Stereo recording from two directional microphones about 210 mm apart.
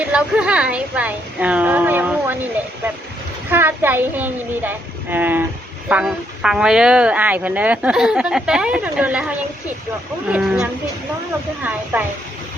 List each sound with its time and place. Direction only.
0.0 s a woman's voice: 5° right (ahead or behind)
3.5 s speech: 10° right (ahead or behind)